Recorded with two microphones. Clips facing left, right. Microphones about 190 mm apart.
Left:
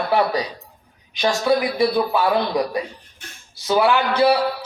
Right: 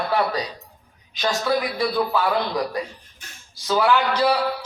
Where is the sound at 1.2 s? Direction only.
15° left (ahead or behind).